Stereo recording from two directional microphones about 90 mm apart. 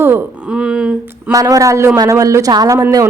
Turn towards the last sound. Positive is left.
turn(degrees=-40)  # may be behind; listen again after turning